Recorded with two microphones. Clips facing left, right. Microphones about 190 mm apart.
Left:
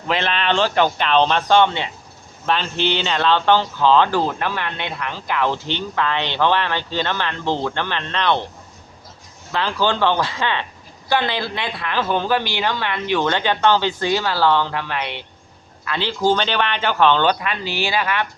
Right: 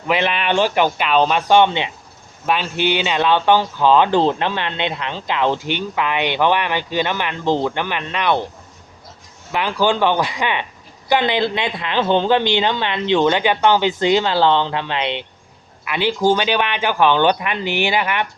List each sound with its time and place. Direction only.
0.1 s speech: 10° right (ahead or behind)
9.5 s speech: 15° right (ahead or behind)